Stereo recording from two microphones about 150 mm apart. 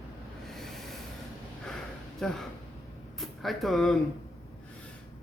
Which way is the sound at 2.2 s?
5° left (ahead or behind).